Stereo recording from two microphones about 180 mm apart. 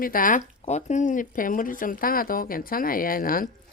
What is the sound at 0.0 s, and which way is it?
Speech, 50° left (ahead or behind).